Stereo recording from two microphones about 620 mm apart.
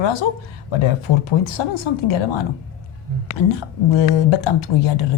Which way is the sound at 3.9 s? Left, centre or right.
Left.